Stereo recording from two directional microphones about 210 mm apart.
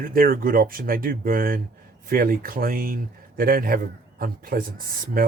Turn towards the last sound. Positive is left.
turn(degrees=-45)  # may be behind; listen again after turning